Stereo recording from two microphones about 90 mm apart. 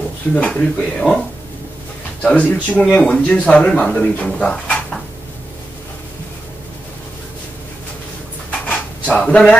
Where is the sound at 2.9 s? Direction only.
10° left (ahead or behind).